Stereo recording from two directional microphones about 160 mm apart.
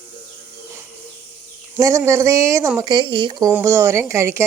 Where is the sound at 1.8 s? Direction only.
20° right (ahead or behind).